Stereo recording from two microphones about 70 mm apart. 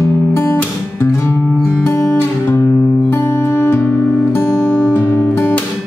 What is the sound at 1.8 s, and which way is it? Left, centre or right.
Music, left.